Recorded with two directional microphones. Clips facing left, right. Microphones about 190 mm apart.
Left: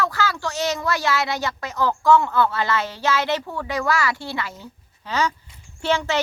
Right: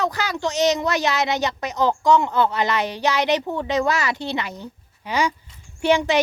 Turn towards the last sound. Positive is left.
turn(degrees=-15)  # may be behind; listen again after turning